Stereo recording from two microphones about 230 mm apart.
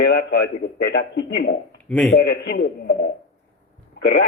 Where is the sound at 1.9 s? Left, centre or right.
Centre.